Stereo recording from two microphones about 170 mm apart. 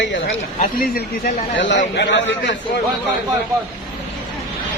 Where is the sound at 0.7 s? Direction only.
60° left (ahead or behind); by 2.5 s 90° left.